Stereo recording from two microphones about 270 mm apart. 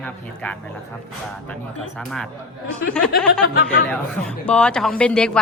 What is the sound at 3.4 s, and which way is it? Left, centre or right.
Speech, left.